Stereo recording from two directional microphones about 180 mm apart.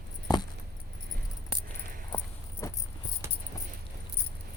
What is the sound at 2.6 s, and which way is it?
Keys jangling, 15° left (ahead or behind).